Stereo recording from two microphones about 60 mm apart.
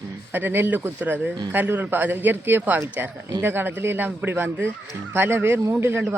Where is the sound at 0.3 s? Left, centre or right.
Right.